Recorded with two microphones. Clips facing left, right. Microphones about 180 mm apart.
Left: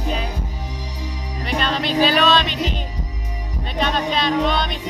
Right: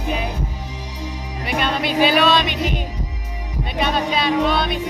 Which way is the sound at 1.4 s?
10° right (ahead or behind).